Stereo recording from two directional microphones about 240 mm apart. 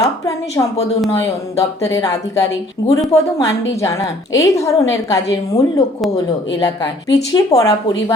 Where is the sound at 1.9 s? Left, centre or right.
Centre.